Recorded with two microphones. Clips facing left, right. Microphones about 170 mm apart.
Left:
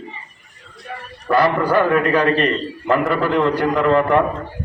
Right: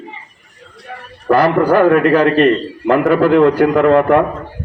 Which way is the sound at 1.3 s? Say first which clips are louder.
Right 5 dB; 55° right (ahead or behind).